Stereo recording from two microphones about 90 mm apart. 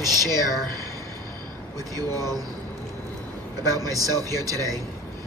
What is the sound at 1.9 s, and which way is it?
Speech, 40° right (ahead or behind).